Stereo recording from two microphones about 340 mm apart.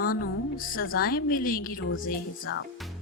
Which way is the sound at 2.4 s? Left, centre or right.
Left.